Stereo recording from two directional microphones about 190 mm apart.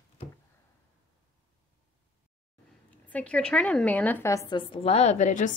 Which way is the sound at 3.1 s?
5° left (ahead or behind).